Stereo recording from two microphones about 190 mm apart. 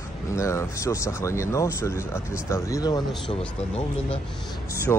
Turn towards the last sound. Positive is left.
turn(degrees=10)  # may be behind; listen again after turning